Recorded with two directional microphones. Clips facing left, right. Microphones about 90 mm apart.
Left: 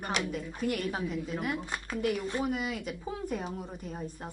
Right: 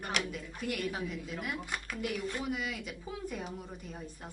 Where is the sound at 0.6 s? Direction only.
40° left (ahead or behind).